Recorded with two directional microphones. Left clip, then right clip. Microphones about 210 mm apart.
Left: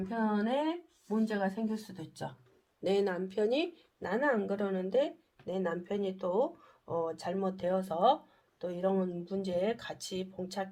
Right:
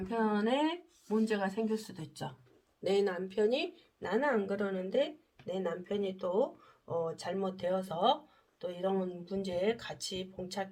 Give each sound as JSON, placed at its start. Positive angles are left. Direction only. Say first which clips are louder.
{"t": 0.1, "sound": "speech", "louder": "right 1 dB", "side_deg": 20}
{"t": 2.8, "sound": "speech", "louder": "even", "side_deg": 40}